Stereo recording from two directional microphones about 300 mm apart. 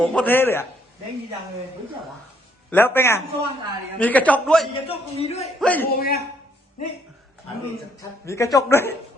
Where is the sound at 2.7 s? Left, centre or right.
Centre.